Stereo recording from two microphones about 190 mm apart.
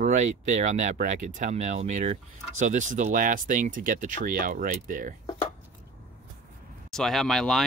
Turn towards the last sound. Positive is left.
turn(degrees=0)  # may be behind; listen again after turning